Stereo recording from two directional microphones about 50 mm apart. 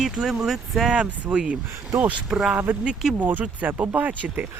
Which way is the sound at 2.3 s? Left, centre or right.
Centre.